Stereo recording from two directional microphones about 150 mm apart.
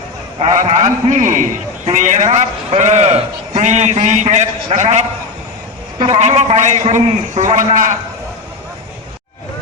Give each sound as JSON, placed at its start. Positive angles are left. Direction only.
{"t": 0.6, "sound": "a man's voice", "side_deg": -55}